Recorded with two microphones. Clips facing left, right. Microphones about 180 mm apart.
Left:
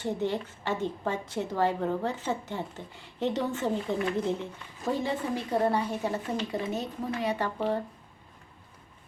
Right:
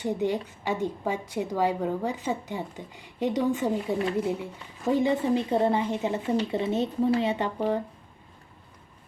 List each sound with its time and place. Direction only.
0.0 s a woman's voice: 15° right (ahead or behind)